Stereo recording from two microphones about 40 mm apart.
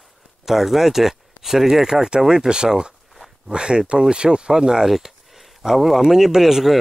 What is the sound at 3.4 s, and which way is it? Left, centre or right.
Speech, right.